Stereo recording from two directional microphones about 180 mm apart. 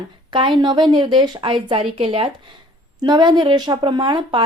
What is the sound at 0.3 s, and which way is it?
Speech, 25° right (ahead or behind).